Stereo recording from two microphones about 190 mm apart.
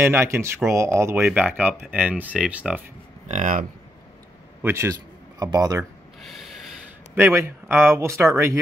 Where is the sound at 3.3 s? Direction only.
40° right (ahead or behind).